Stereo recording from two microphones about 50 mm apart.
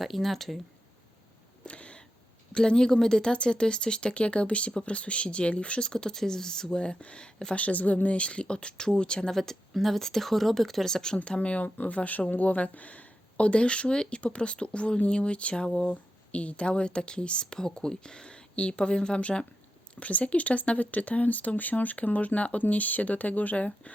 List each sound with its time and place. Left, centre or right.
0.0 s speech: centre
1.6 s a sound: left
2.5 s speech: centre
7.6 s speech: left; by 11.2 s centre
11.3 s speech: left